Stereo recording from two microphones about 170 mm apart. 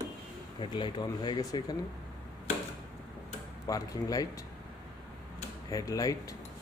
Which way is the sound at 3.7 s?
20° left (ahead or behind).